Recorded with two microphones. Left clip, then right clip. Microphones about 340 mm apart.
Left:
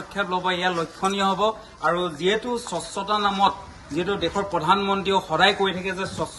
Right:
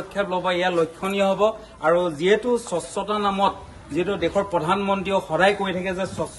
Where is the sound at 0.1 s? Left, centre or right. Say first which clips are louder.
Right 1 dB; centre.